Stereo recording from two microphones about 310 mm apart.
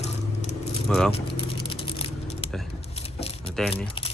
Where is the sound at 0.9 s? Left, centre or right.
Centre.